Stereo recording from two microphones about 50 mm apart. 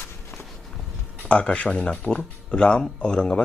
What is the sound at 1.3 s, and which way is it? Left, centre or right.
Speech, left.